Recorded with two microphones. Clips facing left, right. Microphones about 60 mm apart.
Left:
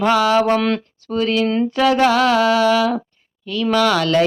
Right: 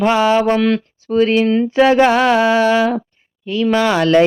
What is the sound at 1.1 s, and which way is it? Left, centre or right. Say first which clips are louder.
Speech: right 5 dB; right.